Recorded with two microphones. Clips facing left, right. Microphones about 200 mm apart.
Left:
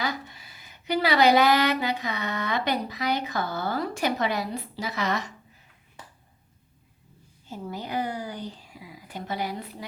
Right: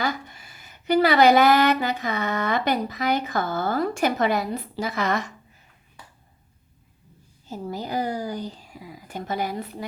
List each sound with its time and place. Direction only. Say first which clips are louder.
0.0 s speech: right 3 dB; 50° right (ahead or behind)
7.4 s speech: right 4 dB; 40° right (ahead or behind)